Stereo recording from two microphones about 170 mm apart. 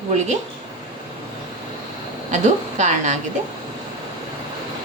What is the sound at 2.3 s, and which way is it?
Speech, 45° right (ahead or behind).